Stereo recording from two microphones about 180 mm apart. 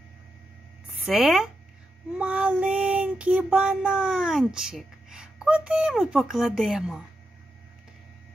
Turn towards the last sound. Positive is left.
turn(degrees=-5)  # may be behind; listen again after turning